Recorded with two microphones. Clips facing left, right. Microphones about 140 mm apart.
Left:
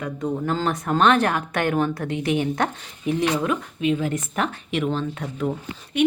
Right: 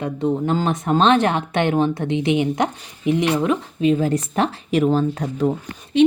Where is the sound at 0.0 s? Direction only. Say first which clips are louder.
Right 5 dB; 30° right (ahead or behind).